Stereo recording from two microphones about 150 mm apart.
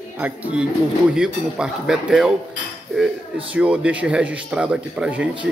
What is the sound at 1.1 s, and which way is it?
Speech, 5° right (ahead or behind).